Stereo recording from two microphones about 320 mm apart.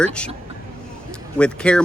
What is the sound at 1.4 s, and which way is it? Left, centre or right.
Speech, centre.